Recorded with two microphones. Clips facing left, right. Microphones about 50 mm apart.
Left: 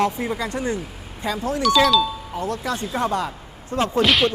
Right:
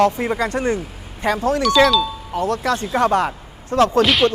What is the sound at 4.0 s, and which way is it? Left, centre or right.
Speech, centre.